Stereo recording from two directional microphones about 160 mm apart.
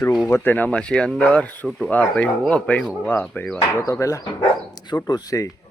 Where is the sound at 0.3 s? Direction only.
15° left (ahead or behind).